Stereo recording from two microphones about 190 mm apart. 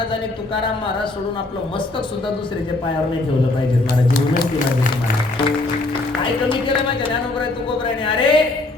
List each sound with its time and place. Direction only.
0.1 s speech: 25° left (ahead or behind)
4.1 s speech: 55° left (ahead or behind)
6.5 s speech: 25° left (ahead or behind)